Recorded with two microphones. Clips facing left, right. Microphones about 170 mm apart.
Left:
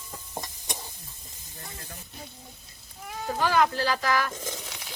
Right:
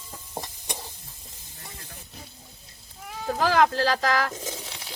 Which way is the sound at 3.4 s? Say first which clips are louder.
Right 3 dB; 90° right.